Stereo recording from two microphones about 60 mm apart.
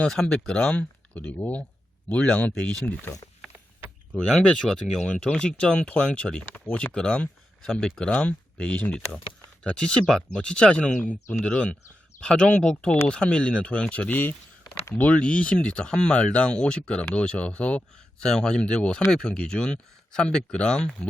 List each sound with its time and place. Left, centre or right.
0.1 s speech: centre; by 3.1 s left
4.3 s speech: centre